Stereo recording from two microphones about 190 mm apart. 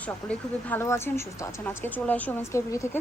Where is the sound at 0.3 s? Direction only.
10° left (ahead or behind).